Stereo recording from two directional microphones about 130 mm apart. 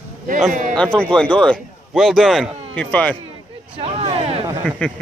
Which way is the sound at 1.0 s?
5° left (ahead or behind).